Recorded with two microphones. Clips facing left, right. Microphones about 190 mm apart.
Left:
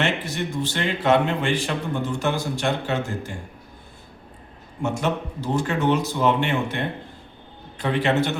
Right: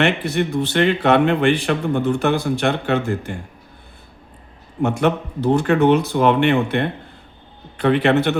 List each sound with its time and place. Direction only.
0.0 s speech: 60° right (ahead or behind)
4.8 s speech: 60° right (ahead or behind)